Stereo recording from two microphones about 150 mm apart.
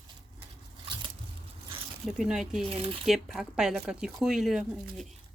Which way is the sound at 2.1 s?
5° right (ahead or behind).